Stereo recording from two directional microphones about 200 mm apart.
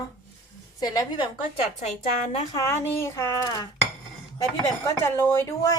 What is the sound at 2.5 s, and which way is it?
A woman's voice, 15° left (ahead or behind).